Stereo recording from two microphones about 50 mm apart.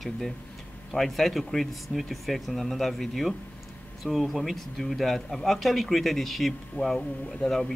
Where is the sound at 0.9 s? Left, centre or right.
Centre.